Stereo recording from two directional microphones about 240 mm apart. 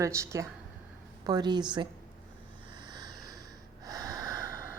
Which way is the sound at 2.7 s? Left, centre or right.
Centre.